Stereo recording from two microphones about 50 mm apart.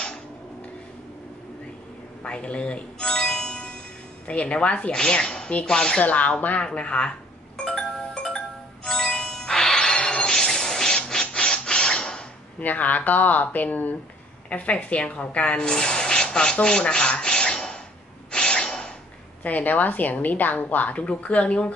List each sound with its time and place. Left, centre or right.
2.2 s music: left
4.3 s speech: left
6.0 s speech: left
7.6 s music: centre
12.6 s speech: left; by 17.8 s centre
18.3 s a sound: centre
19.4 s speech: left